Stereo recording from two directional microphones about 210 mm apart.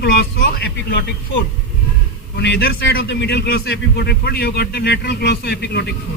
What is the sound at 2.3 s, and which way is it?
A man's voice, 55° left (ahead or behind).